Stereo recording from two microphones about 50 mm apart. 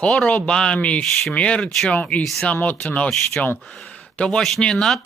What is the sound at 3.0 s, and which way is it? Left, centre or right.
Speech, centre.